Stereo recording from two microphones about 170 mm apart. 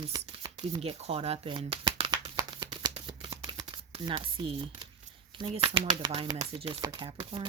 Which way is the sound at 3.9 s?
30° right (ahead or behind).